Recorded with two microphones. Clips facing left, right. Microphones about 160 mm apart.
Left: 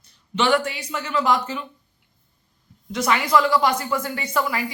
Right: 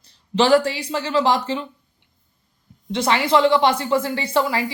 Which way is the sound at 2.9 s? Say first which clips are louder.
Right 2 dB; 30° right (ahead or behind).